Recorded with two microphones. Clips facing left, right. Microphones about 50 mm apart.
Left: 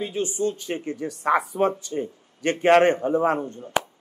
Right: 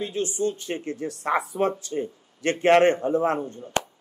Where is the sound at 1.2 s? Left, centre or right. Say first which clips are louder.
Left 3 dB; left.